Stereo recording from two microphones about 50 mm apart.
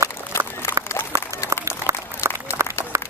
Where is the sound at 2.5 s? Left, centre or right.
Right.